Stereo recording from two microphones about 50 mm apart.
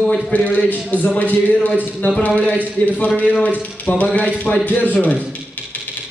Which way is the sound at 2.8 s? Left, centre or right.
Left.